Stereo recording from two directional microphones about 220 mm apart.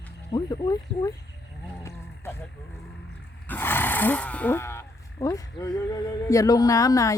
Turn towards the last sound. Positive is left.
turn(degrees=15)  # may be behind; listen again after turning